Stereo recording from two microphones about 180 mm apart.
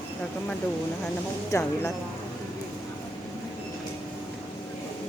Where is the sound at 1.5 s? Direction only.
15° left (ahead or behind).